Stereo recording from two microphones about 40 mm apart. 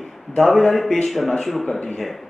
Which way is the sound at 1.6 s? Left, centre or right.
Centre.